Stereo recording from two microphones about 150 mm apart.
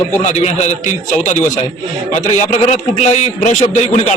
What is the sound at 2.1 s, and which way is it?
A man's voice, 50° left (ahead or behind).